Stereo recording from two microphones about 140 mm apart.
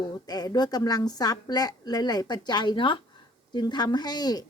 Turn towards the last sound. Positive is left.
turn(degrees=30)  # may be behind; listen again after turning